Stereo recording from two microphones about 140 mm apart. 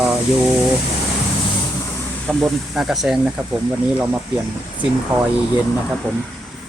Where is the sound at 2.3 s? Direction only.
Centre (ahead or behind).